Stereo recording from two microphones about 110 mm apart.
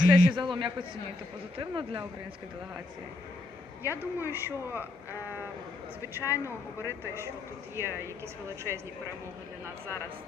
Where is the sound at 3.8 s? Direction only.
20° right (ahead or behind).